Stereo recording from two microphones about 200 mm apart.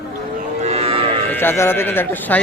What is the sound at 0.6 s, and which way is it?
Livestock, 30° right (ahead or behind).